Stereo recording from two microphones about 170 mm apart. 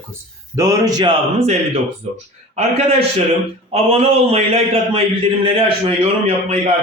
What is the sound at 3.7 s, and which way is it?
A man's voice, 35° right (ahead or behind).